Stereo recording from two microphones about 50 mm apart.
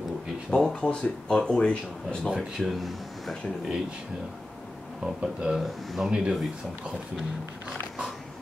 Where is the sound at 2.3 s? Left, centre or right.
Centre.